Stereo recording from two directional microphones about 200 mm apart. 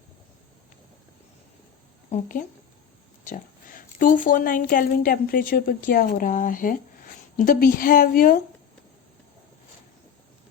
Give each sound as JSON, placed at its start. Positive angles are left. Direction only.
{"t": 2.0, "sound": "a woman's voice", "side_deg": 40}